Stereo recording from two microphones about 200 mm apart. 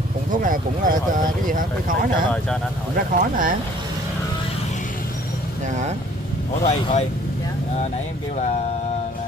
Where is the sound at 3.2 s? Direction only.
40° right (ahead or behind).